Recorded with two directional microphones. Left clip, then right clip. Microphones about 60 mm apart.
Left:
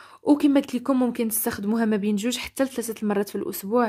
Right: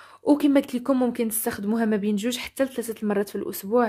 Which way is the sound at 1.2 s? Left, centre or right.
Left.